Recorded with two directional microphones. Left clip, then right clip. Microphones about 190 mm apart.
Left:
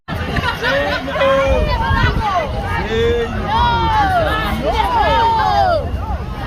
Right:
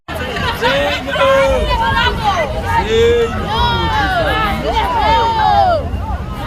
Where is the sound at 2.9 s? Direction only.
25° right (ahead or behind).